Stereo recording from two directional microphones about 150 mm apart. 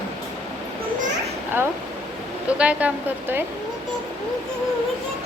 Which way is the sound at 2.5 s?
10° right (ahead or behind).